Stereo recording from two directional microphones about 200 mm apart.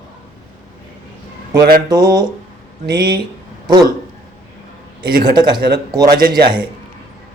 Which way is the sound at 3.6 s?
20° right (ahead or behind).